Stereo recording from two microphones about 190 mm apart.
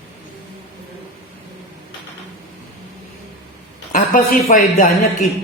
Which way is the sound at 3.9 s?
40° left (ahead or behind).